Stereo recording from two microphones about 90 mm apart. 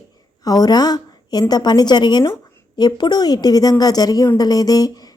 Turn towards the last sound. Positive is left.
turn(degrees=45)  # may be behind; listen again after turning